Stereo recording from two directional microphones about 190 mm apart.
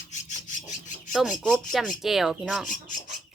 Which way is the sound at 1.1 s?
Centre (ahead or behind).